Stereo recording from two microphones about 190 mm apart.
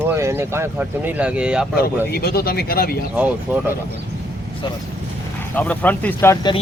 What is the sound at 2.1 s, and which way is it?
Speech, 55° left (ahead or behind).